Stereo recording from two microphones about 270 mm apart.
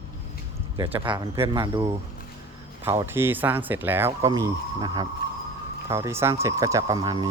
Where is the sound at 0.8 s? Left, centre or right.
Centre.